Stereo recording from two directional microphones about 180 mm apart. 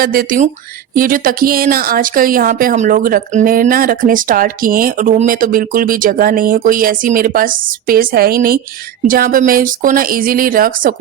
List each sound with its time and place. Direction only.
0.0 s speech: 50° right (ahead or behind)